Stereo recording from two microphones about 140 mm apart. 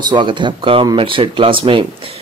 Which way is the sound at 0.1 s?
35° right (ahead or behind).